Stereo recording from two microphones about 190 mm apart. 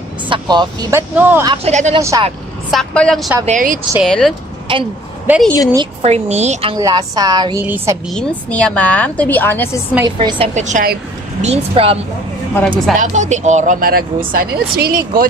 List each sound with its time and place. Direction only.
0.3 s a woman's voice: 20° right (ahead or behind)
1.1 s a woman's voice: 10° right (ahead or behind)
1.5 s a woman's voice: 35° right (ahead or behind)
2.7 s a woman's voice: 5° left (ahead or behind)
3.4 s speech: 45° right (ahead or behind)
4.0 s a woman's voice: centre (ahead or behind)
4.7 s a woman's voice: 25° right (ahead or behind)
5.3 s a woman's voice: 10° right (ahead or behind)
6.0 s a woman's voice: 35° right (ahead or behind)
6.7 s a woman's voice: 20° right (ahead or behind)
8.1 s a woman's voice: 5° left (ahead or behind)
10.0 s a woman's voice: 25° right (ahead or behind)
12.5 s a woman's voice: 10° left (ahead or behind)
12.9 s speech: 40° right (ahead or behind)